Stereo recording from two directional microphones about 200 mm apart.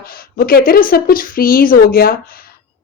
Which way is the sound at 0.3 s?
45° left (ahead or behind).